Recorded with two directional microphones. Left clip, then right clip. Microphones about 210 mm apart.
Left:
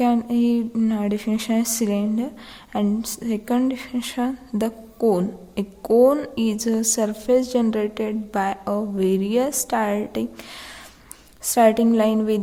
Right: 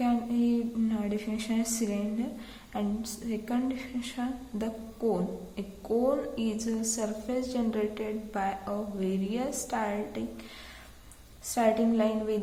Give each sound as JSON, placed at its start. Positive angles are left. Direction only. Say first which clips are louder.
{"t": 0.0, "sound": "a woman's voice", "louder": "left 9 dB", "side_deg": 50}
{"t": 11.5, "sound": "a woman's voice", "louder": "left 10 dB", "side_deg": 55}